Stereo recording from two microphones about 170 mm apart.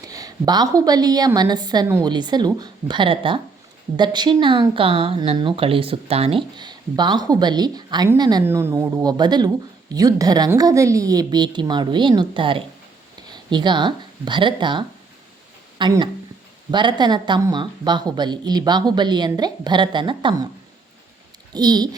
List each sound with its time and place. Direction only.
0.0 s a woman's voice: 20° right (ahead or behind)
21.5 s a woman's voice: 25° right (ahead or behind)